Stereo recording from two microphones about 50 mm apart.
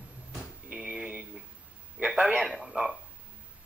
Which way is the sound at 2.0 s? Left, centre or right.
Right.